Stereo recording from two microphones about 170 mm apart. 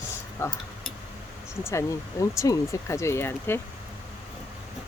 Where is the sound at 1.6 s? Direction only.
15° left (ahead or behind).